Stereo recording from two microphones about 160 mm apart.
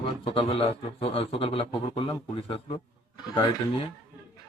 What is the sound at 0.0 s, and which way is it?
A man's voice, 30° left (ahead or behind).